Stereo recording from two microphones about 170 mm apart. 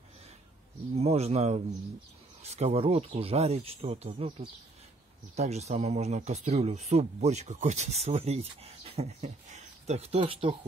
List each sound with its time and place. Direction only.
0.9 s speech: 40° right (ahead or behind)
5.3 s speech: 40° right (ahead or behind)